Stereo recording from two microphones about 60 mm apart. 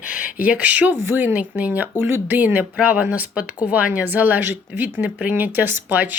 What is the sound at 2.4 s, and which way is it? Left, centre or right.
Speech, right.